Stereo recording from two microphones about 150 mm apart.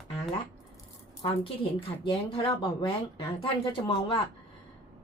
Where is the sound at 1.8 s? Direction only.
35° left (ahead or behind).